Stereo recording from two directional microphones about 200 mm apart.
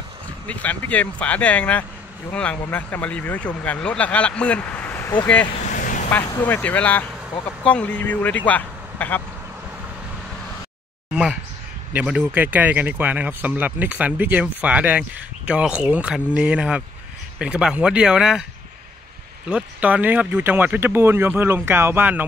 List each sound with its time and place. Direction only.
0.5 s speech: 5° left (ahead or behind)
5.7 s vehicle: 40° left (ahead or behind)
6.0 s speech: 10° left (ahead or behind)
11.9 s speech: 5° right (ahead or behind)
19.5 s speech: 5° right (ahead or behind)